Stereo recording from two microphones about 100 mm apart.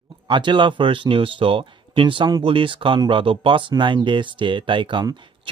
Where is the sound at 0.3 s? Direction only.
50° right (ahead or behind).